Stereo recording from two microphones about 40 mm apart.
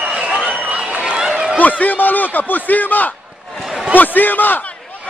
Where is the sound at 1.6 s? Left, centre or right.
Left.